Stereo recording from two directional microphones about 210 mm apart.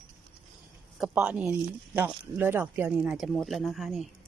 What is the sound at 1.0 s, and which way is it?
Speech, 5° right (ahead or behind).